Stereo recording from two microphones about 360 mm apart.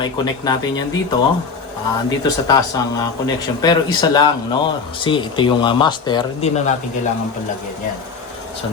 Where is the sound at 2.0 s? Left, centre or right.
Centre.